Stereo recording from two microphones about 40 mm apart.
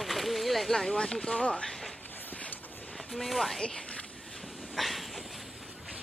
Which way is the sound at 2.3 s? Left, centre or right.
Left.